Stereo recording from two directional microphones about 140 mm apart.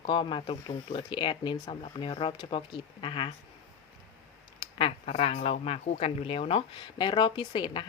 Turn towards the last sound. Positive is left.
turn(degrees=35)  # may be behind; listen again after turning